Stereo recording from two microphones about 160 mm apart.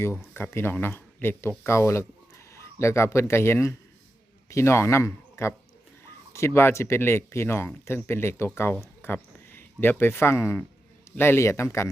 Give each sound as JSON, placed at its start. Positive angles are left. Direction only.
{"t": 0.3, "sound": "a man's voice", "side_deg": 15}